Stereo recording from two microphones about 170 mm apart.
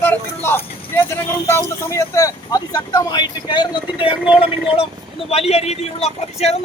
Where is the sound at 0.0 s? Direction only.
10° left (ahead or behind).